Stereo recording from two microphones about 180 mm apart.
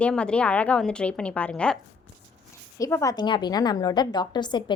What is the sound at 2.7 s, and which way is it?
A woman's voice, 15° left (ahead or behind).